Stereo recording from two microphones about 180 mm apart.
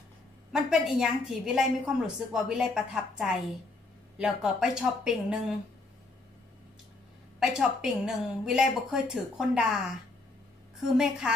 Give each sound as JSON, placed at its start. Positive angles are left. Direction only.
{"t": 0.5, "sound": "a woman's voice", "side_deg": -5}
{"t": 7.3, "sound": "a woman's voice", "side_deg": -5}